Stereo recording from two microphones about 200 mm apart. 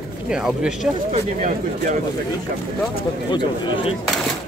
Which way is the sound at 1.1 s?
35° right (ahead or behind).